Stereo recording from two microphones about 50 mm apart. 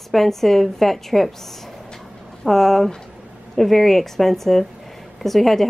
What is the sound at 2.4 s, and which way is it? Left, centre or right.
A woman's voice, centre.